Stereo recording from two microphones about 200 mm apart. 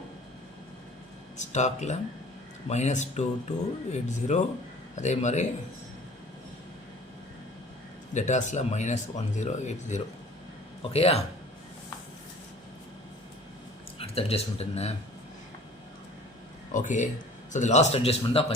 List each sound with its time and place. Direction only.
1.4 s speech: 35° left (ahead or behind)
8.1 s speech: 35° left (ahead or behind)
14.0 s speech: 30° left (ahead or behind)
16.7 s a man's voice: 40° left (ahead or behind)